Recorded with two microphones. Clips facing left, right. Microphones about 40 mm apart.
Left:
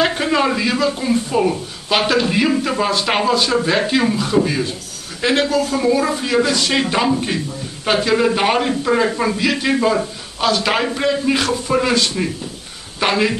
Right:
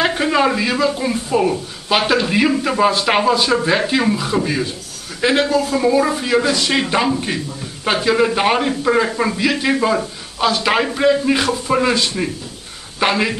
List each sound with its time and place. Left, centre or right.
0.0 s a man's voice: centre
5.5 s a man's voice: centre
11.4 s speech: centre
11.8 s a man's voice: centre